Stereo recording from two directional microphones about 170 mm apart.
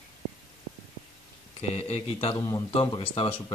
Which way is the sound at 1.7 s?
35° left (ahead or behind).